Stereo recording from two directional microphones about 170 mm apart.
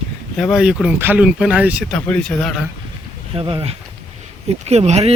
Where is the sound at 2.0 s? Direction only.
10° left (ahead or behind).